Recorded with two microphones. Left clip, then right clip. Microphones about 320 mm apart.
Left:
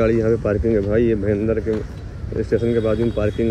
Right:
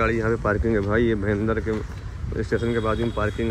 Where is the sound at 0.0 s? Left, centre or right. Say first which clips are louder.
Left 5 dB; centre.